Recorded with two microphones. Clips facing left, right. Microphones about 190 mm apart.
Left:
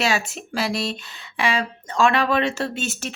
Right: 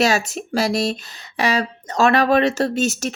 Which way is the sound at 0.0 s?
40° right (ahead or behind).